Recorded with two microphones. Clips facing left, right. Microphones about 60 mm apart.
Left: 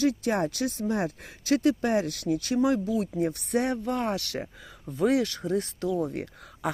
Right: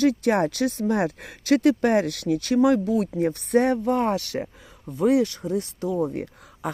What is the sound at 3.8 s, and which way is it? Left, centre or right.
Speech, right.